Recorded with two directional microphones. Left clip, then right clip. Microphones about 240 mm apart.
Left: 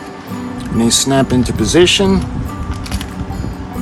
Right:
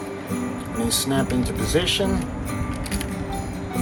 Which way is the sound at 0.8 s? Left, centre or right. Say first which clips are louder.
Left 11 dB; left.